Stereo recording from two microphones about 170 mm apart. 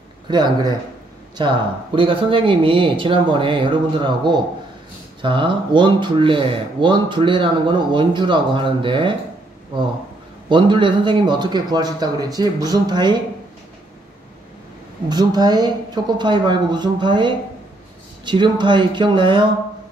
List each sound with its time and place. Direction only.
0.3 s speech: 25° right (ahead or behind)
10.5 s speech: 30° right (ahead or behind)
15.0 s speech: 25° right (ahead or behind)